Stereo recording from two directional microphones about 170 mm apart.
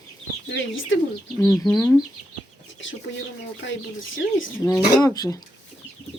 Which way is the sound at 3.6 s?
90° left.